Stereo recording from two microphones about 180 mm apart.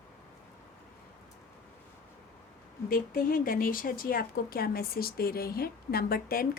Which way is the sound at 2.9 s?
55° left (ahead or behind).